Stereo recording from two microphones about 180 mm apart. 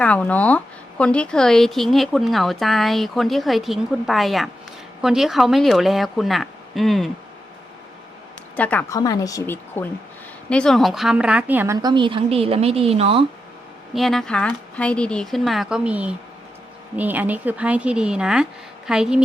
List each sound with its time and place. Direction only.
0.0 s a woman's voice: 10° left (ahead or behind)
8.5 s speech: 10° left (ahead or behind)
10.5 s a woman's voice: 5° left (ahead or behind); by 13.2 s 30° right (ahead or behind)
13.9 s a woman's voice: centre (ahead or behind)